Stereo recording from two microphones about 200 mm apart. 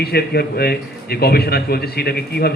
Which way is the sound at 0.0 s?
50° left (ahead or behind).